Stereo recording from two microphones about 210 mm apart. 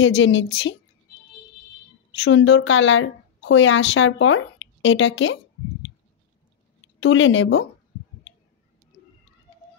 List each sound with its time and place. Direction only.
0.0 s a woman's voice: 65° left (ahead or behind)
2.1 s a woman's voice: 70° left (ahead or behind)
7.0 s speech: 70° left (ahead or behind)